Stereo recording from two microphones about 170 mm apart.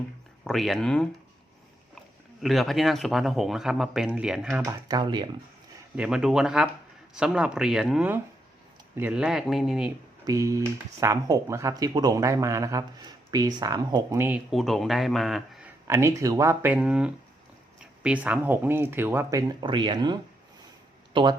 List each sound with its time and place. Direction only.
0.4 s speech: centre (ahead or behind)
2.4 s speech: centre (ahead or behind)
4.6 s speech: 20° right (ahead or behind)
6.0 s speech: 5° right (ahead or behind)
10.2 s speech: 20° right (ahead or behind); by 15.7 s centre (ahead or behind)
15.9 s speech: 15° right (ahead or behind)